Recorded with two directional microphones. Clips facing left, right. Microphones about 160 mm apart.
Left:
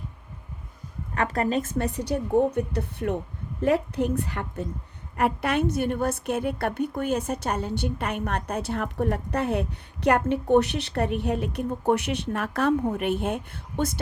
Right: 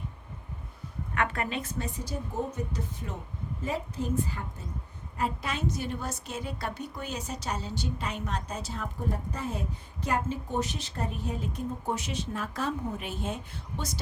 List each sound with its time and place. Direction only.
1.1 s speech: 35° left (ahead or behind)
1.8 s a woman's voice: 70° left (ahead or behind)